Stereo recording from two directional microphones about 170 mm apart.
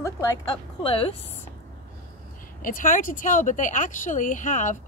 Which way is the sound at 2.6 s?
55° left (ahead or behind).